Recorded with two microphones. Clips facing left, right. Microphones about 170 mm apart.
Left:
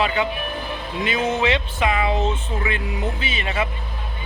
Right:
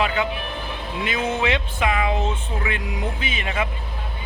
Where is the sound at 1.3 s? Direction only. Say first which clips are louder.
Left 1 dB; 10° right (ahead or behind).